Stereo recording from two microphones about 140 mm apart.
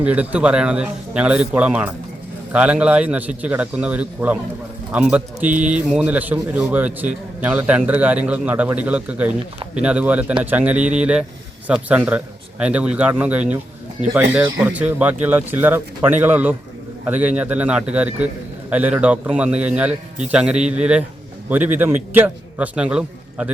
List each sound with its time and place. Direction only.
0.0 s a man's voice: 10° right (ahead or behind)